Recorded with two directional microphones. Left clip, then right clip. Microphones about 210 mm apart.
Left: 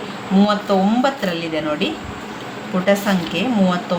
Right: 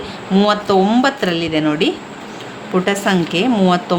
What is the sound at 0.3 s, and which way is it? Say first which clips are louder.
A woman's voice: right 4 dB; 55° right (ahead or behind).